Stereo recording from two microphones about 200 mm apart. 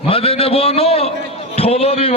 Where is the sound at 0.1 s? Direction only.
30° left (ahead or behind).